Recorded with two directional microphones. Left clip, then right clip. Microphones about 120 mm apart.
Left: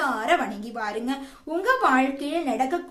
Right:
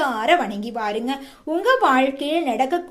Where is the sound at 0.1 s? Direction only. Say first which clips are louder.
Right 4 dB; 30° right (ahead or behind).